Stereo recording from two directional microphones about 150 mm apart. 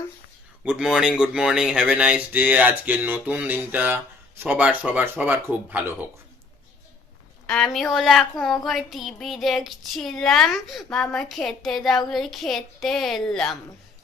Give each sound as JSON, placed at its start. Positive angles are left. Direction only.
{"t": 0.6, "sound": "speech", "side_deg": -5}
{"t": 7.4, "sound": "speech", "side_deg": 5}